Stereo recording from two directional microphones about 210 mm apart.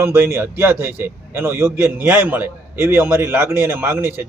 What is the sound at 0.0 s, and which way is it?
A man's voice, 10° right (ahead or behind).